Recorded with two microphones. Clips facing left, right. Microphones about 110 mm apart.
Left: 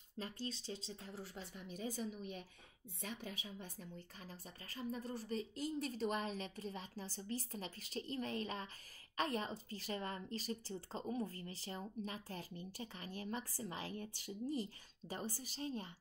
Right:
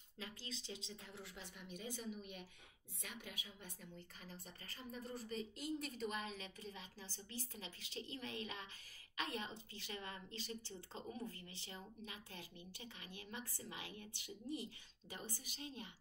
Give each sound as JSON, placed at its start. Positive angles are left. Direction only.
{"t": 0.2, "sound": "a woman's voice", "side_deg": 40}